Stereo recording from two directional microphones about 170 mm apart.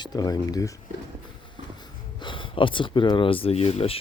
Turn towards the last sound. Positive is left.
turn(degrees=35)  # may be behind; listen again after turning